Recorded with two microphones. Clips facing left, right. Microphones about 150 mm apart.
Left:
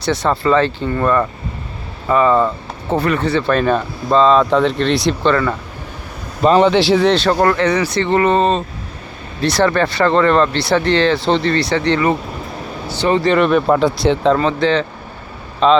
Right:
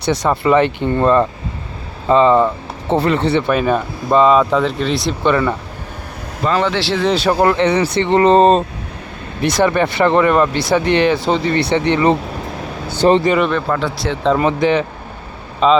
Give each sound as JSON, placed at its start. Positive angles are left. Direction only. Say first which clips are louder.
{"t": 0.0, "sound": "speech", "louder": "right 1 dB", "side_deg": -15}
{"t": 3.4, "sound": "speech", "louder": "even", "side_deg": -10}
{"t": 5.2, "sound": "speech", "louder": "right 3 dB", "side_deg": -15}
{"t": 6.4, "sound": "speech", "louder": "left 6 dB", "side_deg": 20}
{"t": 7.0, "sound": "speech", "louder": "left 1 dB", "side_deg": -10}
{"t": 9.4, "sound": "speech", "louder": "even", "side_deg": -15}
{"t": 13.0, "sound": "speech", "louder": "right 4 dB", "side_deg": -40}
{"t": 13.5, "sound": "speech", "louder": "left 5 dB", "side_deg": 15}
{"t": 14.3, "sound": "speech", "louder": "right 1 dB", "side_deg": -15}
{"t": 15.6, "sound": "speech", "louder": "even", "side_deg": -5}